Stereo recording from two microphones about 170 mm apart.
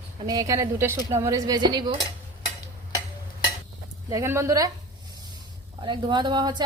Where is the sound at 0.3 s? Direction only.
20° right (ahead or behind).